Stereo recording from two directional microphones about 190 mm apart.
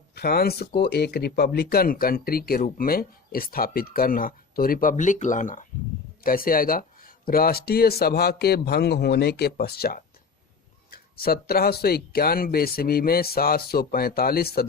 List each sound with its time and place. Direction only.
0.2 s speech: 55° left (ahead or behind)